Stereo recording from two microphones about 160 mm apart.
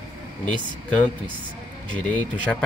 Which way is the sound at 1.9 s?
10° left (ahead or behind).